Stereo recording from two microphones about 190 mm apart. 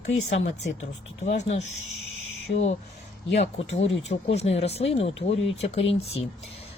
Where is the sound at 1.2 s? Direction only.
35° left (ahead or behind).